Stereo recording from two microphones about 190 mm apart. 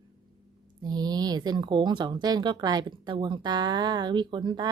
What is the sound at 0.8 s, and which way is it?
Speech, 20° right (ahead or behind).